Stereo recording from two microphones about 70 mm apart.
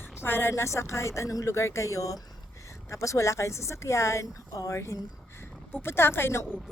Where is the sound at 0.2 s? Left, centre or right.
Left.